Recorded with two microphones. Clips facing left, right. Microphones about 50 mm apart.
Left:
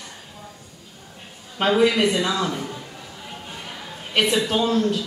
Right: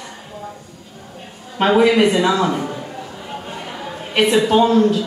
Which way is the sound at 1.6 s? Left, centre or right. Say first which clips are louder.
Right 5 dB; right.